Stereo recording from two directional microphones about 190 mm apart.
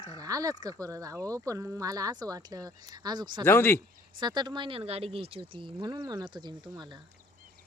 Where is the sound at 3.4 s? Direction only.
10° left (ahead or behind).